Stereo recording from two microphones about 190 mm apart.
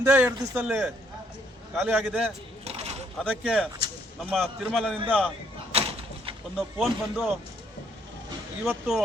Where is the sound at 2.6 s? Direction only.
35° right (ahead or behind).